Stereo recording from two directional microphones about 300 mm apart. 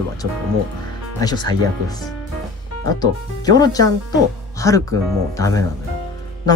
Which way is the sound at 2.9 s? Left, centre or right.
Centre.